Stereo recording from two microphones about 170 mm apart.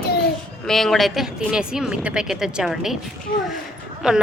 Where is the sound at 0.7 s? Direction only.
Centre (ahead or behind).